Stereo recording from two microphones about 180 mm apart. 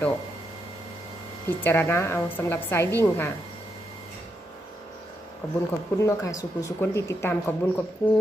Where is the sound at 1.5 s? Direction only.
10° left (ahead or behind).